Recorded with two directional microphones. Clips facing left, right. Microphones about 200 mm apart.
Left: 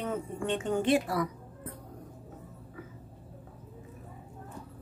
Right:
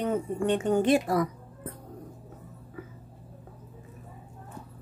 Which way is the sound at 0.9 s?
45° right (ahead or behind).